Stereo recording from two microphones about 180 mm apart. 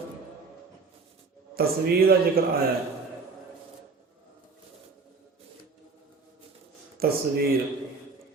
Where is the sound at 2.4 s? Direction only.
55° right (ahead or behind).